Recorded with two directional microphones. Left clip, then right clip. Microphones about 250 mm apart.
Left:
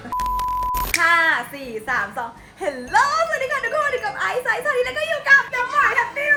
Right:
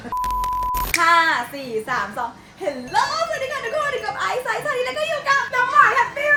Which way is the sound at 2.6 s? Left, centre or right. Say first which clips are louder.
Left 3 dB; centre.